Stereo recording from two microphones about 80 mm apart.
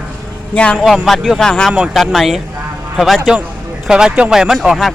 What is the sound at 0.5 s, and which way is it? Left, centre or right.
Speech, centre.